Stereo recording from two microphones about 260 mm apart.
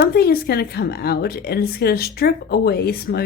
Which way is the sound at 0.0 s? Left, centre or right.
Left.